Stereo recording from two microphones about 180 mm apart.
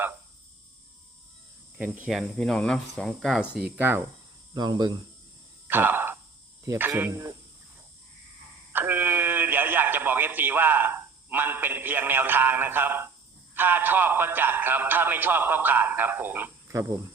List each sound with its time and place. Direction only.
1.8 s speech: 5° right (ahead or behind)
4.5 s speech: 25° right (ahead or behind)
5.6 s a sound: 10° right (ahead or behind)
6.7 s speech: 10° right (ahead or behind)
8.7 s speech: 10° right (ahead or behind)